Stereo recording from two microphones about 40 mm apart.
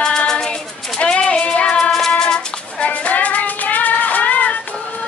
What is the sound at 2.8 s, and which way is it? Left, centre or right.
Music, left.